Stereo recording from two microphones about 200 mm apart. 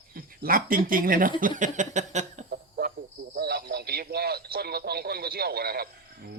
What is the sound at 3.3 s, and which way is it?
A man's voice, 55° right (ahead or behind).